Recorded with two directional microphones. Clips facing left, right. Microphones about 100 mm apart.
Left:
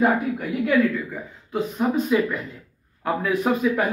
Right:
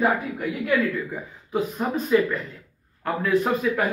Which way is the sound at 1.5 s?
Centre (ahead or behind).